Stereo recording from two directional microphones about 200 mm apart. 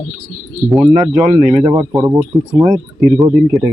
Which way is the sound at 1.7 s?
15° right (ahead or behind).